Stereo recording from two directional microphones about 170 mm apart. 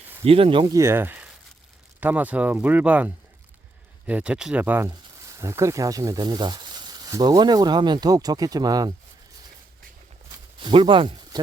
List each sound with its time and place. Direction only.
0.3 s speech: 35° right (ahead or behind)
0.8 s speech: 15° right (ahead or behind)
10.6 s speech: 30° right (ahead or behind)